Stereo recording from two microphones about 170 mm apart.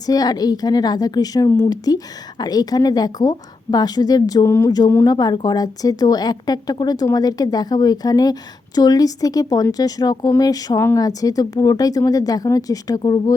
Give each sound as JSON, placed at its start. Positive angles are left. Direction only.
{"t": 0.0, "sound": "a woman's voice", "side_deg": 20}